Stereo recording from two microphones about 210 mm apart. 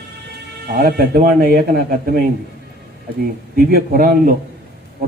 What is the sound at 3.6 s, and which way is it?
Speech, 45° right (ahead or behind).